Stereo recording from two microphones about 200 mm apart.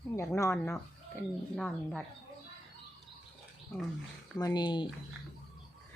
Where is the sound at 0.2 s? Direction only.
15° left (ahead or behind).